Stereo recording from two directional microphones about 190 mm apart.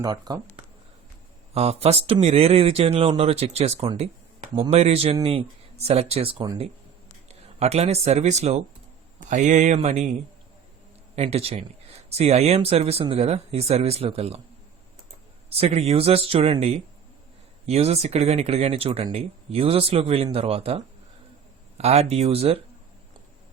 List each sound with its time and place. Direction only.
0.0 s speech: 20° right (ahead or behind)
1.5 s speech: 30° right (ahead or behind)
6.3 s speech: 20° right (ahead or behind)
7.3 s a man's voice: 35° right (ahead or behind)
15.4 s speech: 30° right (ahead or behind)